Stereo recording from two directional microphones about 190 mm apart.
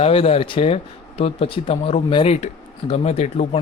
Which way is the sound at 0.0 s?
30° left (ahead or behind).